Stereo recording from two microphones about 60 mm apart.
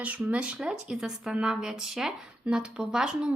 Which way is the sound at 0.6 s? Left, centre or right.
Centre.